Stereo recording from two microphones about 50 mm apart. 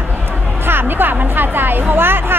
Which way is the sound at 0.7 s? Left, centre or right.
Right.